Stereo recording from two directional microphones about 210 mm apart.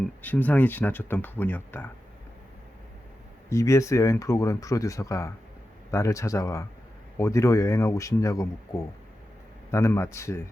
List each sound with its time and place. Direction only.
0.2 s speech: 10° left (ahead or behind)
3.5 s speech: 15° left (ahead or behind)